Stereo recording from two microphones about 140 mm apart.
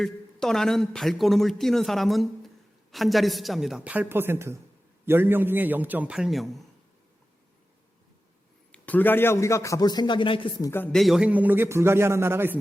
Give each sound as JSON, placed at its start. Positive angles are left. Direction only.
{"t": 0.0, "sound": "a man's voice", "side_deg": 5}
{"t": 8.7, "sound": "a man's voice", "side_deg": 10}
{"t": 10.6, "sound": "a man's voice", "side_deg": 20}
{"t": 10.9, "sound": "a man's voice", "side_deg": 0}